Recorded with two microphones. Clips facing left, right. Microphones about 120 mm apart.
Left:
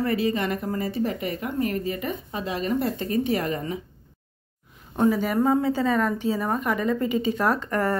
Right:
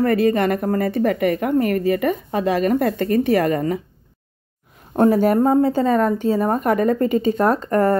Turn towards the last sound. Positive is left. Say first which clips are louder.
# right 7 dB
turn(degrees=-40)  # may be behind; listen again after turning